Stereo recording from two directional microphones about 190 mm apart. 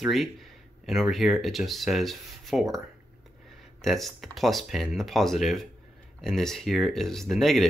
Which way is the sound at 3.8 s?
Centre (ahead or behind).